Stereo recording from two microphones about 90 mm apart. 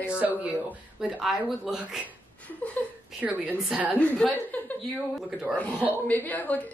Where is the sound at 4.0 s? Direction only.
15° left (ahead or behind).